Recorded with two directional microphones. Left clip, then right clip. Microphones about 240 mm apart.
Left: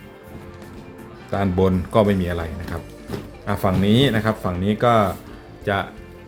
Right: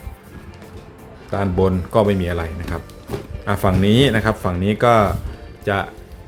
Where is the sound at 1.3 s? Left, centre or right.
Centre.